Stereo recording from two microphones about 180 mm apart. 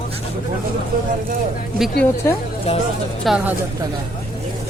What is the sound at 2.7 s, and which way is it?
Speech, 30° left (ahead or behind).